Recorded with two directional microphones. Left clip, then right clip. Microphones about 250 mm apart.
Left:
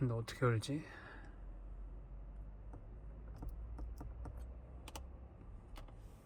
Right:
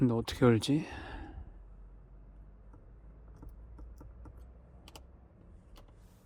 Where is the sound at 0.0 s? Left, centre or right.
Right.